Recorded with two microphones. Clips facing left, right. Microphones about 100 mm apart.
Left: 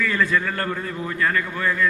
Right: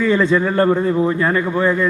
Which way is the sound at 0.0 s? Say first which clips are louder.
Right 7 dB; 25° right (ahead or behind).